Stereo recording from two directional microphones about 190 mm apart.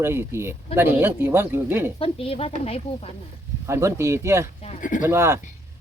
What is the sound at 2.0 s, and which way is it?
Speech, 30° left (ahead or behind).